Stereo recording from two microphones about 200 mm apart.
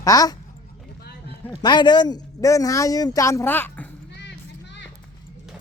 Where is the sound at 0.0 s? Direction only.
20° left (ahead or behind).